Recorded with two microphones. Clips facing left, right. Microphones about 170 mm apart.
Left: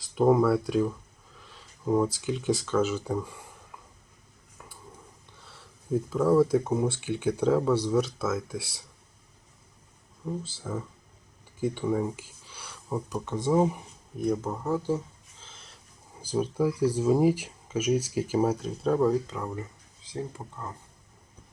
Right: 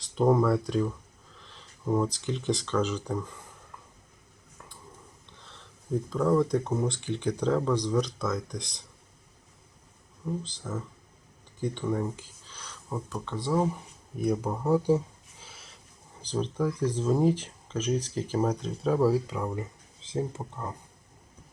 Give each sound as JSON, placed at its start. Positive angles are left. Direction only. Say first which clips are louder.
{"t": 0.1, "sound": "speech", "louder": "left 2 dB", "side_deg": 5}
{"t": 1.4, "sound": "a sound", "louder": "left 1 dB", "side_deg": 5}
{"t": 2.2, "sound": "speech", "louder": "left 2 dB", "side_deg": 5}
{"t": 5.4, "sound": "speech", "louder": "even", "side_deg": 10}
{"t": 10.4, "sound": "speech", "louder": "left 1 dB", "side_deg": 10}
{"t": 14.2, "sound": "speech", "louder": "even", "side_deg": -10}